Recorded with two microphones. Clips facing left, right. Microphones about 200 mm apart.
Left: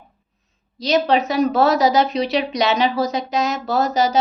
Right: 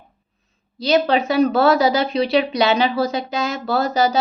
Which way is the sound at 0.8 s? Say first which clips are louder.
Even; 30° right (ahead or behind).